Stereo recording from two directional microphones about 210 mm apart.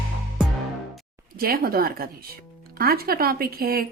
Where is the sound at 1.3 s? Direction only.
45° right (ahead or behind).